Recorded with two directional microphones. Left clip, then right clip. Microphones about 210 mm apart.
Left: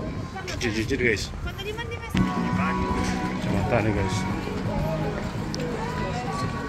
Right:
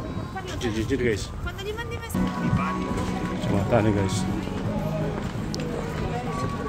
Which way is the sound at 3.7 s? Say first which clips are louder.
Right 2 dB; 25° right (ahead or behind).